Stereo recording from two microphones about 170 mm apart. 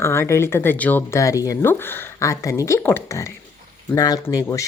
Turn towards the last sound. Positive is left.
turn(degrees=20)  # may be behind; listen again after turning